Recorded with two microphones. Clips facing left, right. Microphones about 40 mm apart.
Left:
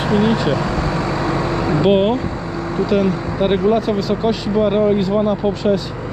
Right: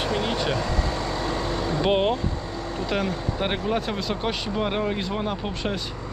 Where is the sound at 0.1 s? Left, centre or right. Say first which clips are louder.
Left 15 dB; left.